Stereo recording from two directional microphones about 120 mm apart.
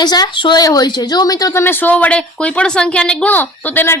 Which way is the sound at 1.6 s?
15° left (ahead or behind).